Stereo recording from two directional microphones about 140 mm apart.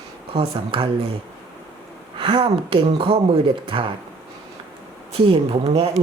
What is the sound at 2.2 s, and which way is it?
Speech, 40° right (ahead or behind).